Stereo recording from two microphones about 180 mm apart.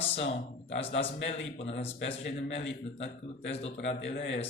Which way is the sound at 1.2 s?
90° left.